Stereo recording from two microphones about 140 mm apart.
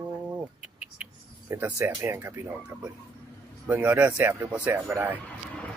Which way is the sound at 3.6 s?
10° right (ahead or behind).